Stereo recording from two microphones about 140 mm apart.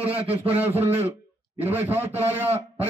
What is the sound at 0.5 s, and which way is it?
A man's voice, 15° right (ahead or behind).